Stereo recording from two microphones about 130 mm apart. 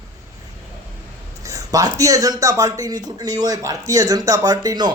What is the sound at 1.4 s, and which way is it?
Speech, 25° right (ahead or behind).